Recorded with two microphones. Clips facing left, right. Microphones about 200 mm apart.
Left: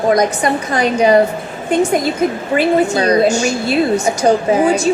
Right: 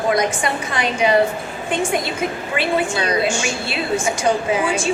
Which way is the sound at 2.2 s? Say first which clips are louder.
Left 8 dB; 40° left (ahead or behind).